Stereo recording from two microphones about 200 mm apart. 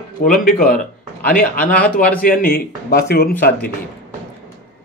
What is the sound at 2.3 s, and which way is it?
Speech, 45° left (ahead or behind).